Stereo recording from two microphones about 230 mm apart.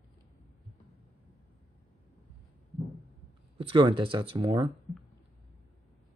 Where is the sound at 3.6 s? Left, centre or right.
Right.